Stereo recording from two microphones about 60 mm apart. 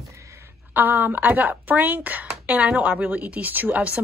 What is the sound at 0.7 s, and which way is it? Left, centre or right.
A woman's voice, right.